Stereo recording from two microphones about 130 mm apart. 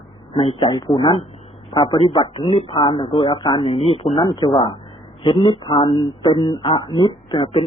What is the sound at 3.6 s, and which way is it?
Speech, 50° left (ahead or behind).